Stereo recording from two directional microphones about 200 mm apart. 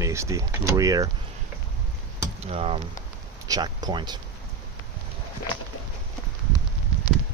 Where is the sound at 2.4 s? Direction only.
30° right (ahead or behind).